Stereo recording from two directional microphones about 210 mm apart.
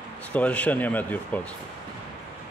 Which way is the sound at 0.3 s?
5° left (ahead or behind).